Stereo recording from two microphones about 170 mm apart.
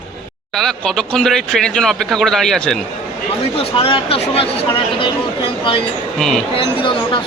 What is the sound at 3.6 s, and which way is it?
Speech, 30° left (ahead or behind).